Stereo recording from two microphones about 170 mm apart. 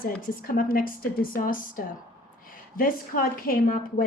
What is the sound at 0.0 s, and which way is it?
A woman's voice, 55° left (ahead or behind).